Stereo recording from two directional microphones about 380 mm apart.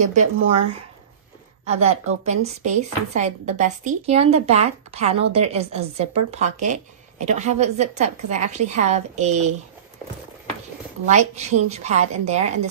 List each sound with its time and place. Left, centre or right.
0.0 s speech: centre
1.7 s speech: centre
11.1 s speech: centre